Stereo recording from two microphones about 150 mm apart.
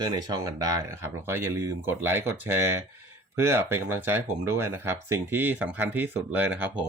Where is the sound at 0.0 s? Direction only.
25° right (ahead or behind).